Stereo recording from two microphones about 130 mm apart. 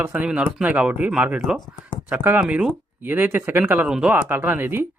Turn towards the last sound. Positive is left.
turn(degrees=-15)  # may be behind; listen again after turning